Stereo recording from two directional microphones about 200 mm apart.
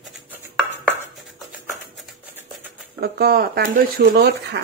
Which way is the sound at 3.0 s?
50° right (ahead or behind).